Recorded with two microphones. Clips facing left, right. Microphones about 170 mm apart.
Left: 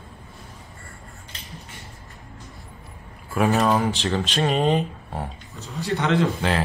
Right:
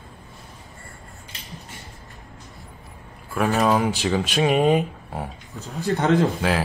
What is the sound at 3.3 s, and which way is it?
Speech, centre (ahead or behind).